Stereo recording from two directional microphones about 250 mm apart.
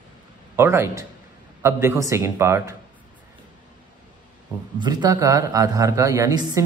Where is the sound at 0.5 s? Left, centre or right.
Centre.